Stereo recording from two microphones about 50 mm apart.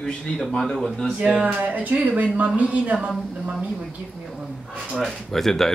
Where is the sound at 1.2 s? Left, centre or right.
Right.